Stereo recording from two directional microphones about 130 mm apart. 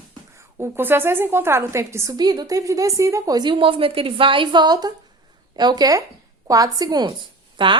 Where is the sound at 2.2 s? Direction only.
35° right (ahead or behind).